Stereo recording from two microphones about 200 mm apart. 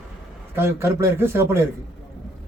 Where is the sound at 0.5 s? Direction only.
10° right (ahead or behind).